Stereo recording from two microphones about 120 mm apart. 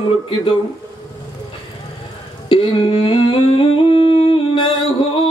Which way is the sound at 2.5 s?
45° left (ahead or behind).